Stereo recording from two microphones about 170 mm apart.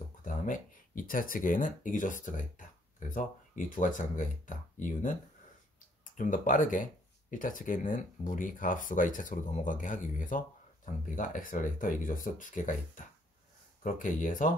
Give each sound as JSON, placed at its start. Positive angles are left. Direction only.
{"t": 0.2, "sound": "speech", "side_deg": 50}
{"t": 6.1, "sound": "speech", "side_deg": 50}